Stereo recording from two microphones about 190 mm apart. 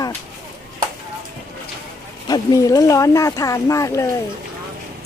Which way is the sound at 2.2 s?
20° left (ahead or behind).